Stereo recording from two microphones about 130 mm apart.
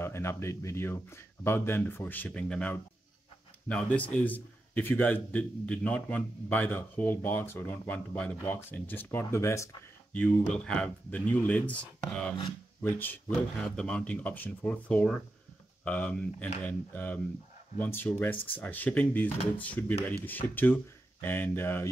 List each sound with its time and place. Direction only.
0.0 s a man's voice: 20° left (ahead or behind)
10.1 s a man's voice: 5° left (ahead or behind)